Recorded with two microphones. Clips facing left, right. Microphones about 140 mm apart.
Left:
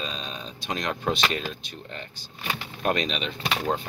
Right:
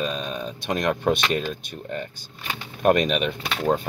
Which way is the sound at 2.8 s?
50° right (ahead or behind).